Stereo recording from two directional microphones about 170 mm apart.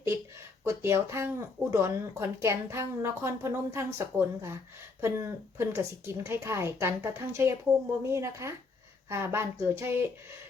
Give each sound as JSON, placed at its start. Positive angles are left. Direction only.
{"t": 0.6, "sound": "speech", "side_deg": -15}